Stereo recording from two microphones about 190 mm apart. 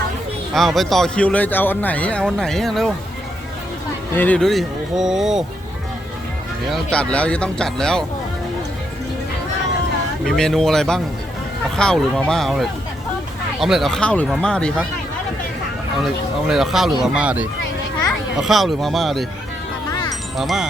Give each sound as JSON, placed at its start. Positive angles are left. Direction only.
{"t": 0.5, "sound": "speech", "side_deg": 0}
{"t": 4.1, "sound": "speech", "side_deg": 10}
{"t": 6.7, "sound": "speech", "side_deg": 0}
{"t": 10.2, "sound": "speech", "side_deg": 0}
{"t": 16.5, "sound": "speech", "side_deg": 0}
{"t": 19.9, "sound": "wind chime", "side_deg": 20}
{"t": 20.3, "sound": "speech", "side_deg": 0}